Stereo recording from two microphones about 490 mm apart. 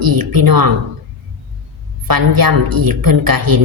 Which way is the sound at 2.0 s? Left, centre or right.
Right.